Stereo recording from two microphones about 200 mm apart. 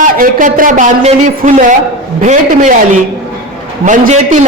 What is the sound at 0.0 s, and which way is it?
A man's voice, 40° right (ahead or behind).